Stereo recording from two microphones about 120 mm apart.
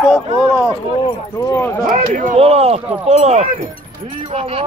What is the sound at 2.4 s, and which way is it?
Speech, 60° right (ahead or behind).